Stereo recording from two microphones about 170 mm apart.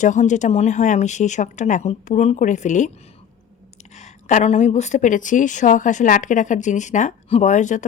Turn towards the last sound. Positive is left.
turn(degrees=45)  # may be behind; listen again after turning